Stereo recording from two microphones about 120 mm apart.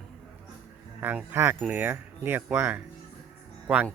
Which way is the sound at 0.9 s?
15° right (ahead or behind).